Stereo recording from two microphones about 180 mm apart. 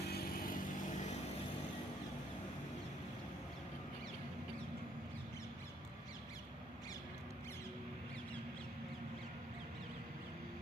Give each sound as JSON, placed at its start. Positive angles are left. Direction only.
{"t": 0.1, "sound": "vehicle", "side_deg": 55}